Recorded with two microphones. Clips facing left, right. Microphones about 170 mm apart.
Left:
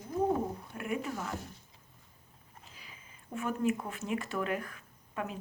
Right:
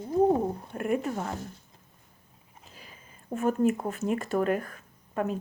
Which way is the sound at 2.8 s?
45° right (ahead or behind).